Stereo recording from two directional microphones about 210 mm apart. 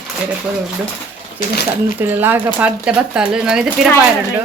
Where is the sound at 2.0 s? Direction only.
10° right (ahead or behind).